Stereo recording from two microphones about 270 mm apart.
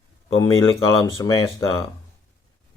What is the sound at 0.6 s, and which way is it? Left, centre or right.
Speech, centre.